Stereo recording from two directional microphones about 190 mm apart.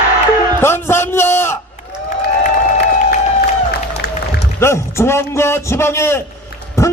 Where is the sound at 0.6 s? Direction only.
15° left (ahead or behind).